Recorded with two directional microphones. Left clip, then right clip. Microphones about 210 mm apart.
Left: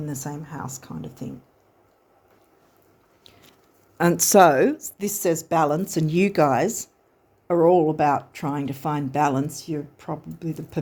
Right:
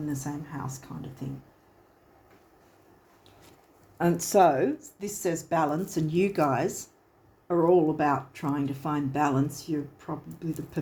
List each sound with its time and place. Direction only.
0.1 s speech: 50° left (ahead or behind)
3.9 s speech: 55° left (ahead or behind)